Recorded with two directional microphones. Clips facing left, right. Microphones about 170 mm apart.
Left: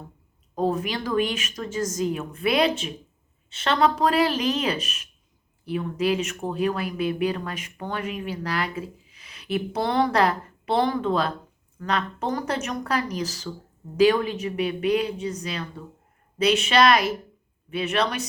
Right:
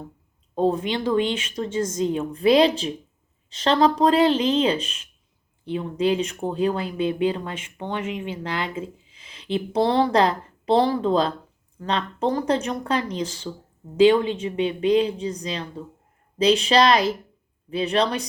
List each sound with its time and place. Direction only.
0.5 s a woman's voice: 30° right (ahead or behind)